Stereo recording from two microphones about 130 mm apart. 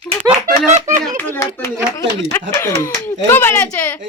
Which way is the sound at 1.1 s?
15° left (ahead or behind).